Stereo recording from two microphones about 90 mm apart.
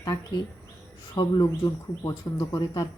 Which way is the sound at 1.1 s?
50° left (ahead or behind).